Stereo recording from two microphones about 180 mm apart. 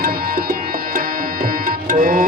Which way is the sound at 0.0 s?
55° right (ahead or behind).